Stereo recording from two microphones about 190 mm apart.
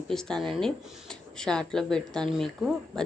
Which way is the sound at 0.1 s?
5° left (ahead or behind).